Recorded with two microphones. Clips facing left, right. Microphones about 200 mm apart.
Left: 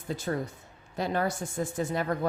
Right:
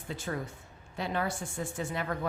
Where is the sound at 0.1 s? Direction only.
40° left (ahead or behind).